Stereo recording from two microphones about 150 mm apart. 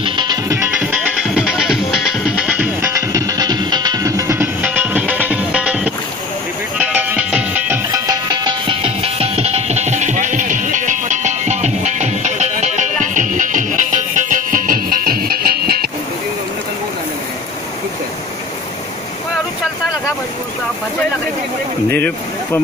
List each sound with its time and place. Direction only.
0.0 s music: 30° right (ahead or behind); by 15.9 s 90° right
21.9 s speech: 10° left (ahead or behind)